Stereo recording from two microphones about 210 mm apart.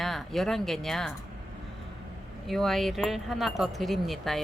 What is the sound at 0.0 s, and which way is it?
Speech, centre (ahead or behind).